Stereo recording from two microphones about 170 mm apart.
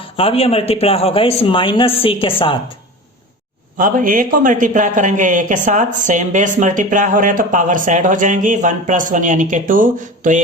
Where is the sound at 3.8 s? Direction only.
55° right (ahead or behind).